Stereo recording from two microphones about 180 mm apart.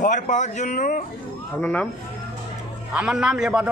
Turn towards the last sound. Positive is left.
turn(degrees=-5)  # may be behind; listen again after turning